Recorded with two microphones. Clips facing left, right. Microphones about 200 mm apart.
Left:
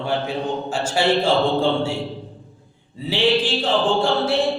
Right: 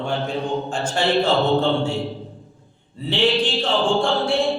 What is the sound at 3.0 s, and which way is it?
A man's voice, 5° left (ahead or behind).